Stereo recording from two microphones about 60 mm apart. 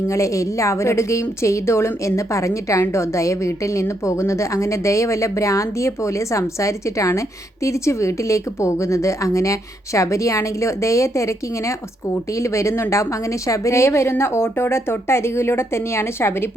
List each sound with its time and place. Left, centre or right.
0.1 s a woman's voice: left